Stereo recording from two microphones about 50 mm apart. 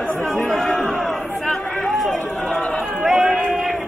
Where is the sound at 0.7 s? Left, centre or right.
Centre.